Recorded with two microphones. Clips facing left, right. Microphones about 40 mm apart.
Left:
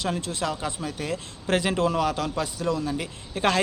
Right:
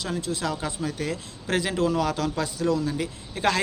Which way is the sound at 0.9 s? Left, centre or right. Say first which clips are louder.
Right 1 dB; centre.